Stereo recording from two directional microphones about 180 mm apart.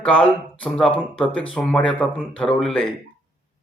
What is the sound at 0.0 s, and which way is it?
Speech, 5° left (ahead or behind).